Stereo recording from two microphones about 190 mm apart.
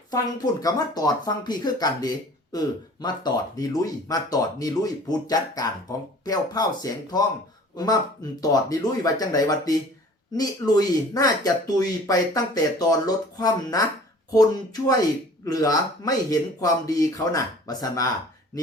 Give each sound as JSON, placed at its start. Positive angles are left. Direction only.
{"t": 0.1, "sound": "speech", "side_deg": 20}